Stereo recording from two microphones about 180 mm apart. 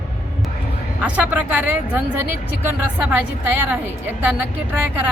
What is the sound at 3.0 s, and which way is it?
A woman's voice, 10° right (ahead or behind).